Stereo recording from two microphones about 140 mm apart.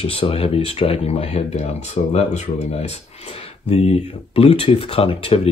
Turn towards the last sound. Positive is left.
turn(degrees=45)  # may be behind; listen again after turning